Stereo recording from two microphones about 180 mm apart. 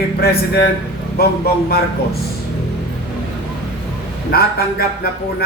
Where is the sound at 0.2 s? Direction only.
60° left (ahead or behind).